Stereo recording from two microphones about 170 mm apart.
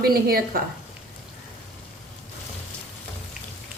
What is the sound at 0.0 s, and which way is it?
Speech, 60° right (ahead or behind).